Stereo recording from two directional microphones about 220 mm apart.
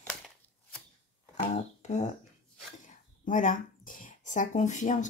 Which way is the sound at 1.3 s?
30° left (ahead or behind).